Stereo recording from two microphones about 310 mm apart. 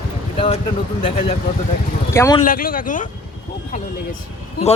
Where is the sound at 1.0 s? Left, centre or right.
Centre.